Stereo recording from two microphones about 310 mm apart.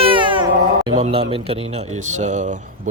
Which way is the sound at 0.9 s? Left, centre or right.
Centre.